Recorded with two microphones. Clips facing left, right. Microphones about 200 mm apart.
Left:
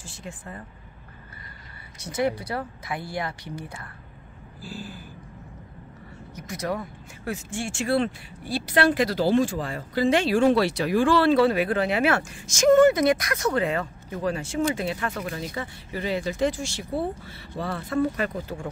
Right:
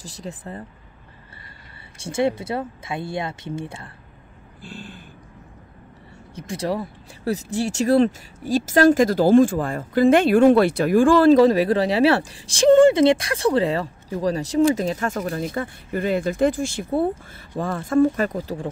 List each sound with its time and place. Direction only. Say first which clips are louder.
0.0 s speech: right 5 dB; 35° right (ahead or behind)
2.0 s speech: right 4 dB; 25° right (ahead or behind)
4.6 s speech: left 1 dB; 5° left (ahead or behind)
6.3 s speech: right 4 dB; 30° right (ahead or behind)